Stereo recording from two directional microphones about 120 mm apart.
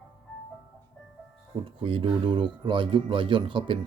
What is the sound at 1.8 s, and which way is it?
Speech, 45° right (ahead or behind).